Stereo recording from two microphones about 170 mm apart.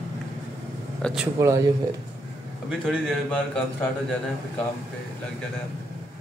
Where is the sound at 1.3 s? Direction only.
20° right (ahead or behind).